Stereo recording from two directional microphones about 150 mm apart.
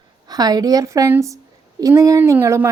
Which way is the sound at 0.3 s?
25° right (ahead or behind).